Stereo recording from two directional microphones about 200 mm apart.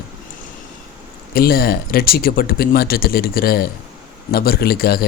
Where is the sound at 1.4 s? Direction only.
50° left (ahead or behind).